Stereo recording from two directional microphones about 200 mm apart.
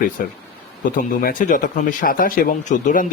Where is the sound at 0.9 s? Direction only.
40° left (ahead or behind).